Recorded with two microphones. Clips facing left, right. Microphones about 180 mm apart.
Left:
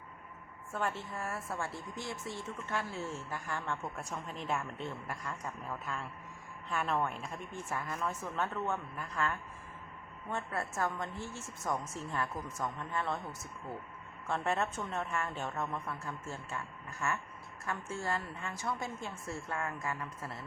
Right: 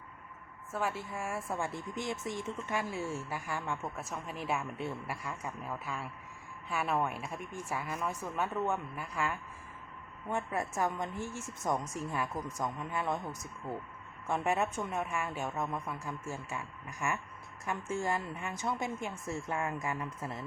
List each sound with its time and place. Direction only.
0.7 s a woman's voice: 5° right (ahead or behind)